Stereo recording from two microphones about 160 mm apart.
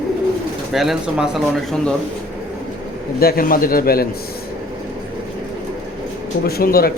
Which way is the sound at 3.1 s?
70° left (ahead or behind).